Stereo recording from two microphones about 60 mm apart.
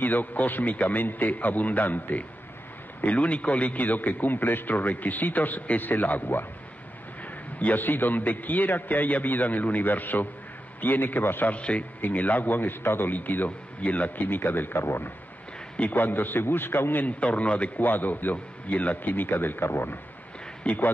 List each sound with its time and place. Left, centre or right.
0.0 s a man's voice: left
7.5 s a man's voice: left
11.5 s a man's voice: left
17.0 s a man's voice: left
20.6 s a man's voice: left